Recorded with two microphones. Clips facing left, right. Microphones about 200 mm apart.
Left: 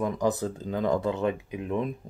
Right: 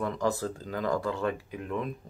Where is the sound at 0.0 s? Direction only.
15° left (ahead or behind).